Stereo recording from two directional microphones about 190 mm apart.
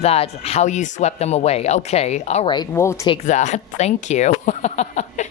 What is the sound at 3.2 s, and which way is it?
Speech, 40° left (ahead or behind).